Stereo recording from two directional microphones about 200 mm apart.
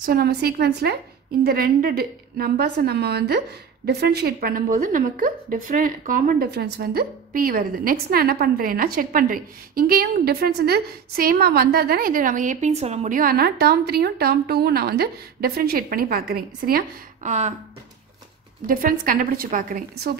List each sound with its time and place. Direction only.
0.0 s a woman's voice: 50° right (ahead or behind)
18.7 s a woman's voice: 45° right (ahead or behind)